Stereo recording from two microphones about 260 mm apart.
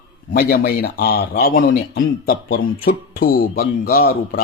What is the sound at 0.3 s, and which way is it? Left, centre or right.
A man's voice, left.